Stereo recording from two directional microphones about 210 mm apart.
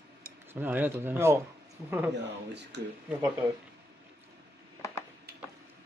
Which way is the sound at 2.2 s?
55° right (ahead or behind).